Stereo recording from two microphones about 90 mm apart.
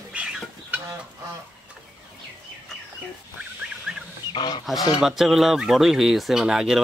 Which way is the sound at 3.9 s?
5° right (ahead or behind).